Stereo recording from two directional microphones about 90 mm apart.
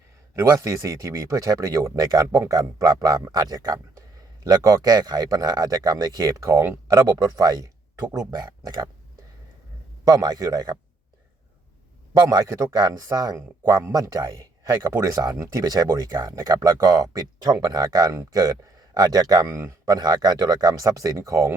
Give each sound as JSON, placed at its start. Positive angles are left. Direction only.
{"t": 0.3, "sound": "speech", "side_deg": -35}
{"t": 10.0, "sound": "speech", "side_deg": -45}
{"t": 12.7, "sound": "speech", "side_deg": -45}
{"t": 19.5, "sound": "speech", "side_deg": -30}